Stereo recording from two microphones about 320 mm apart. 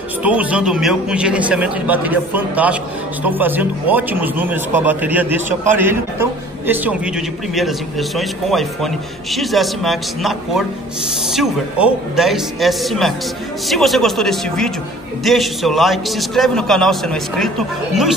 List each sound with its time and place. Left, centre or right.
0.2 s speech: centre
8.2 s speech: centre